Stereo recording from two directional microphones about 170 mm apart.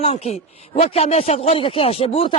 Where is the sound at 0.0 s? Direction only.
35° left (ahead or behind).